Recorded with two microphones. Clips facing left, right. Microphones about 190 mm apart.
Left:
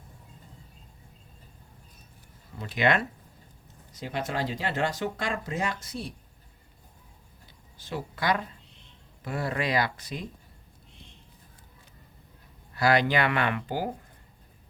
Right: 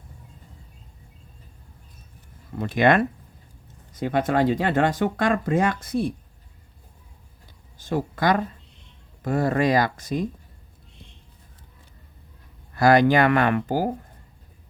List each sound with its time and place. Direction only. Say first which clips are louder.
2.6 s speech: right 7 dB; 50° right (ahead or behind)
7.8 s speech: right 8 dB; 45° right (ahead or behind)
12.7 s speech: right 7 dB; 45° right (ahead or behind)